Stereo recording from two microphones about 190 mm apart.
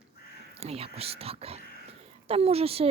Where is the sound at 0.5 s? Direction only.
30° right (ahead or behind).